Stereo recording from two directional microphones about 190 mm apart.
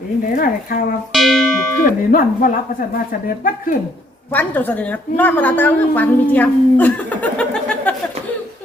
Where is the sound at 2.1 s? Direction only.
50° left (ahead or behind).